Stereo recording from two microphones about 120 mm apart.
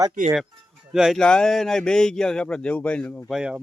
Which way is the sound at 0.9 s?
5° right (ahead or behind).